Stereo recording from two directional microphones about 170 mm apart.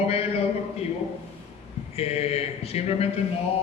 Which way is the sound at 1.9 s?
35° left (ahead or behind).